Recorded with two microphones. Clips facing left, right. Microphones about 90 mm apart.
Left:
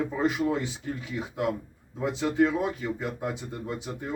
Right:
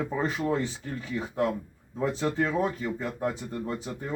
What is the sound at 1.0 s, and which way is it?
Speech, 15° left (ahead or behind).